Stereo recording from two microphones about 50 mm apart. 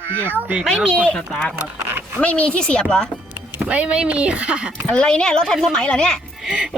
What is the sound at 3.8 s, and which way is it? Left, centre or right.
Speech, centre.